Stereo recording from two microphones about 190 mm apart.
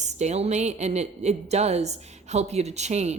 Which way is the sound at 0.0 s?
35° right (ahead or behind).